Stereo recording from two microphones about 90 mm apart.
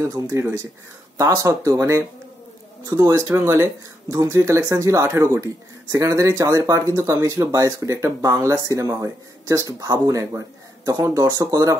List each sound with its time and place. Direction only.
0.0 s speech: 35° right (ahead or behind)